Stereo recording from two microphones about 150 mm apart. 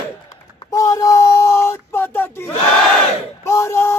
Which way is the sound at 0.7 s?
20° left (ahead or behind).